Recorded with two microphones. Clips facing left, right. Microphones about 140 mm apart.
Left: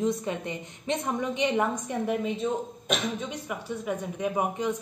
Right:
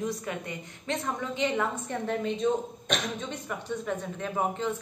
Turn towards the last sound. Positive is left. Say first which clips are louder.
# left 2 dB
turn(degrees=15)  # may be behind; listen again after turning